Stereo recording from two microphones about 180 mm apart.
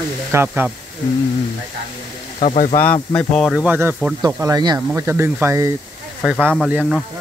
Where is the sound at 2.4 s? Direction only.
40° left (ahead or behind).